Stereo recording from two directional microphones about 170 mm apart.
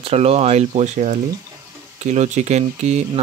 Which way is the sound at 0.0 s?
35° right (ahead or behind).